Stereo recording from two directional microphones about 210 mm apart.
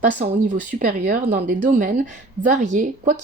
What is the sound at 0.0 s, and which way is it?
Speech, 40° right (ahead or behind).